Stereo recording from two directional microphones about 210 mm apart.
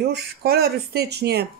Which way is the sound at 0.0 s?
50° right (ahead or behind).